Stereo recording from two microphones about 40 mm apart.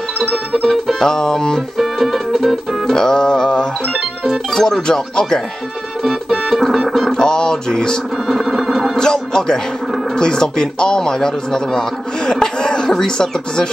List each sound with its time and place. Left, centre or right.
0.2 s music: centre
0.9 s a man's voice: centre
1.8 s music: centre
2.9 s a man's voice: centre
6.0 s organ: centre
7.1 s a sound: centre
8.3 s music: centre
8.9 s a man's voice: centre
12.3 s a sound: centre